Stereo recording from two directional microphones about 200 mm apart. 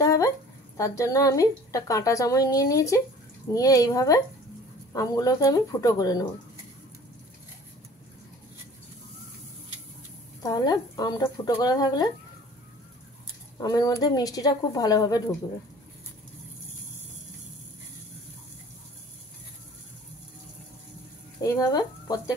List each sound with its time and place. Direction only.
0.0 s a sound: 15° left (ahead or behind)
0.7 s a woman's voice: 15° left (ahead or behind)
10.4 s a woman's voice: 20° left (ahead or behind)
13.6 s a woman's voice: 20° left (ahead or behind)
21.4 s speech: 15° left (ahead or behind)